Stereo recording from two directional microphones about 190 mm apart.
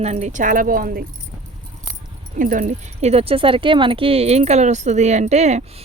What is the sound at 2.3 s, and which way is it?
Speech, 45° right (ahead or behind).